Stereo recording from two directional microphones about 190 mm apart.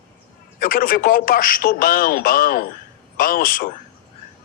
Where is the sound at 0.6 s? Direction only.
50° left (ahead or behind).